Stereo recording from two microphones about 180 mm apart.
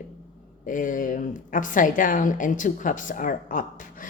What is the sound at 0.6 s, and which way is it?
A woman's voice, 45° left (ahead or behind).